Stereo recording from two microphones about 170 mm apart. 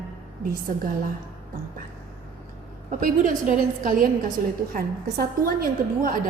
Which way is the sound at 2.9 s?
50° right (ahead or behind).